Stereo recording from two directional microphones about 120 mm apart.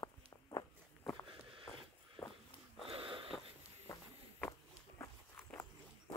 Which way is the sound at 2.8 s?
50° right (ahead or behind).